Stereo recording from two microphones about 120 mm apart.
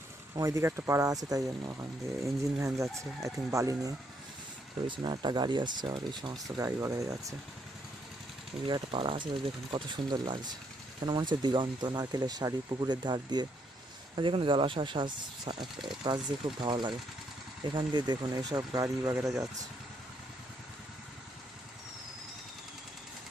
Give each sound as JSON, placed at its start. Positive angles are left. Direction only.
{"t": 0.3, "sound": "speech", "side_deg": -25}
{"t": 4.9, "sound": "speech", "side_deg": -40}
{"t": 8.6, "sound": "speech", "side_deg": -45}